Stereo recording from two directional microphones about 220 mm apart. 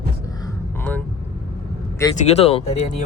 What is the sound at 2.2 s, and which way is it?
Speech, 25° left (ahead or behind).